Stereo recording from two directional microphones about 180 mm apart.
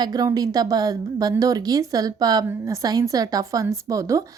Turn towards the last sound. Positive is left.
turn(degrees=-20)  # may be behind; listen again after turning